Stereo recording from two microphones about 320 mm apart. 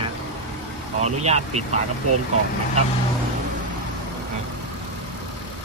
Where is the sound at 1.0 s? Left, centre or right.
Right.